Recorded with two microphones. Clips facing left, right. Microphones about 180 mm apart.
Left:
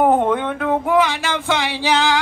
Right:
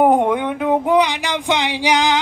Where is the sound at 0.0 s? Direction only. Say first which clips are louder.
Right 1 dB; 15° right (ahead or behind).